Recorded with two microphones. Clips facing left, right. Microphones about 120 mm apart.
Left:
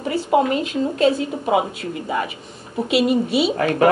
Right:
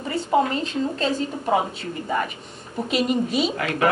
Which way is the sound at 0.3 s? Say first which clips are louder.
Left 3 dB; 10° left (ahead or behind).